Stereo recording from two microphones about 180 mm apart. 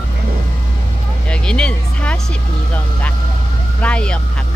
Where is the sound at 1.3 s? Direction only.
5° left (ahead or behind).